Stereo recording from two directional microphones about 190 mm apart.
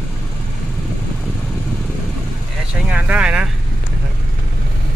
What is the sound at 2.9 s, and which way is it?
Vehicle, 5° right (ahead or behind).